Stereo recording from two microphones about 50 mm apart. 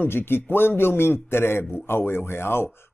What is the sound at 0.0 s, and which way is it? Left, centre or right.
Speech, left.